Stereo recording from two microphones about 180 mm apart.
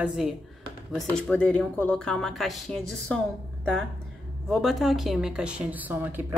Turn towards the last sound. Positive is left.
turn(degrees=-10)  # may be behind; listen again after turning